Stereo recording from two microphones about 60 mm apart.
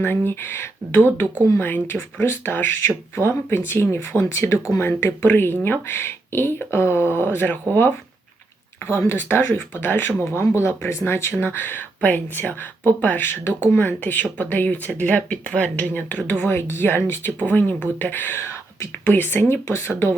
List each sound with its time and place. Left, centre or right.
0.0 s speech: left
19.6 s speech: left
19.9 s speech: left